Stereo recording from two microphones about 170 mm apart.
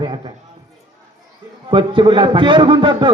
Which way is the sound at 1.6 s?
30° right (ahead or behind).